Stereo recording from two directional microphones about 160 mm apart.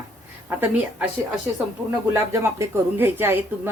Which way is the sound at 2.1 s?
15° right (ahead or behind).